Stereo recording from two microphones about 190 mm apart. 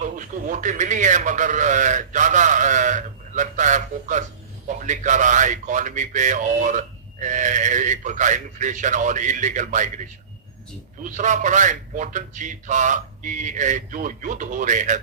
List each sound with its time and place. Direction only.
0.0 s speech: 40° right (ahead or behind)